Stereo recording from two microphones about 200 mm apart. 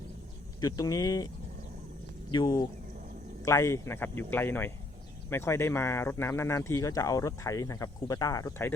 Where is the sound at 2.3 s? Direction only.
20° left (ahead or behind).